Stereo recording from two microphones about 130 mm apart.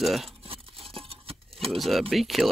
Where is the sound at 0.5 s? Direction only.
45° right (ahead or behind).